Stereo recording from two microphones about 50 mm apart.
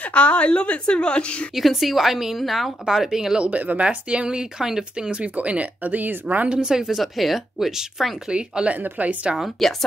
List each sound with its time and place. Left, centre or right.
0.1 s a woman's voice: left
1.5 s speech: centre
3.3 s speech: right; by 5.1 s centre
5.2 s speech: right
6.6 s speech: centre
8.3 s speech: right
9.6 s speech: centre